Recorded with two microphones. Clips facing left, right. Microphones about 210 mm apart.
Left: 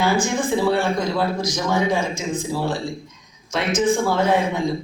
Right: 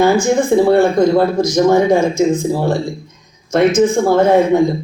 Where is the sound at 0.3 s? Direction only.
45° right (ahead or behind).